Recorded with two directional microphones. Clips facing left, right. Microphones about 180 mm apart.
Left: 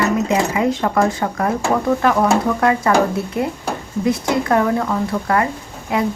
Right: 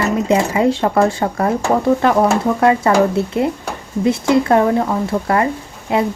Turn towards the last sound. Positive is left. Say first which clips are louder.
# right 3 dB
turn(degrees=-30)  # may be behind; listen again after turning